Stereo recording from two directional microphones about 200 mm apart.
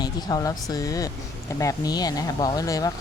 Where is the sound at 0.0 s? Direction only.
20° left (ahead or behind).